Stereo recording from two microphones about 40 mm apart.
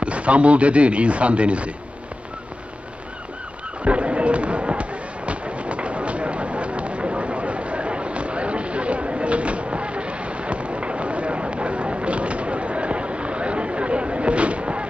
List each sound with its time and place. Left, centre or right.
0.0 s speech: right
3.8 s fireworks: right